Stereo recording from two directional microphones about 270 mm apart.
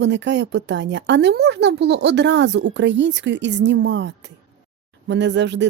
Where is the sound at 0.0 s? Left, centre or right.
Right.